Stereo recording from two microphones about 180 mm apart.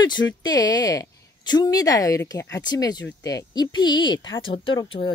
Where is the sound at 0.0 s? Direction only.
25° left (ahead or behind).